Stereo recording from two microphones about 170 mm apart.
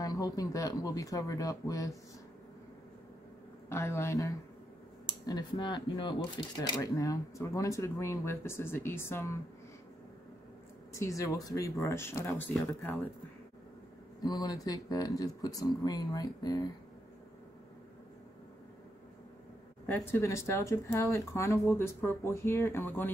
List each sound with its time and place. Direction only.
0.0 s speech: 20° left (ahead or behind)
3.6 s speech: 15° left (ahead or behind)
10.9 s speech: 15° left (ahead or behind)
12.5 s speech: centre (ahead or behind)
14.2 s speech: 20° left (ahead or behind)
19.9 s speech: 15° left (ahead or behind)